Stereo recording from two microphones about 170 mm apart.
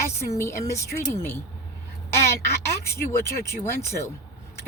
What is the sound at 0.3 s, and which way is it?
Speech, 15° left (ahead or behind).